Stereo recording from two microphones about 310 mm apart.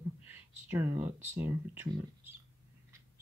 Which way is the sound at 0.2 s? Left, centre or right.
Centre.